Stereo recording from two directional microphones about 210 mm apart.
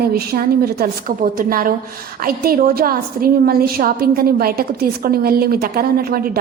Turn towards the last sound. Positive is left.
turn(degrees=-45)  # may be behind; listen again after turning